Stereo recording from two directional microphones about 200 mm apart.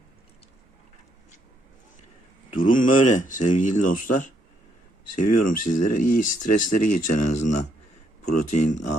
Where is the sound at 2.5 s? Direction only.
40° left (ahead or behind).